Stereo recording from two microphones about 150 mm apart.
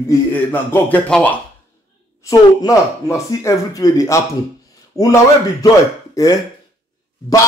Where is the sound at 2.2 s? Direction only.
20° left (ahead or behind).